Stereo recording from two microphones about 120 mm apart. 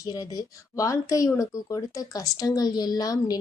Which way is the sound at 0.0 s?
30° left (ahead or behind).